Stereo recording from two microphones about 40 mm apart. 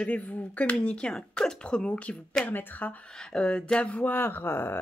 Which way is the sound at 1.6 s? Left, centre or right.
Left.